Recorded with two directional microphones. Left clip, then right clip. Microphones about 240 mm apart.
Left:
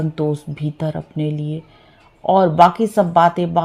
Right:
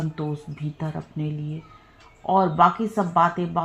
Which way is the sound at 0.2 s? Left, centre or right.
Left.